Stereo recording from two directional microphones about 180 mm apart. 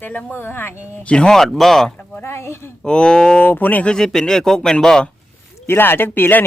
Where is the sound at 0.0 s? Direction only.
10° left (ahead or behind).